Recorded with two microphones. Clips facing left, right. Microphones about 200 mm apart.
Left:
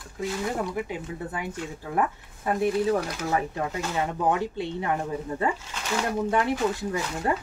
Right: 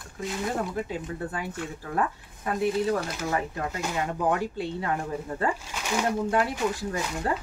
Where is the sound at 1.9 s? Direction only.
20° left (ahead or behind).